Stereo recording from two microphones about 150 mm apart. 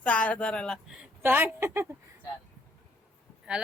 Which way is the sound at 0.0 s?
10° left (ahead or behind).